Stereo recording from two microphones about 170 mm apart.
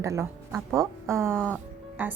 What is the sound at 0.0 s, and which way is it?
A woman's voice, 15° right (ahead or behind).